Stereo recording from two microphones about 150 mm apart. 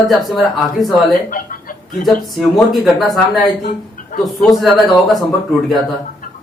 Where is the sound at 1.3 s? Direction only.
70° left (ahead or behind).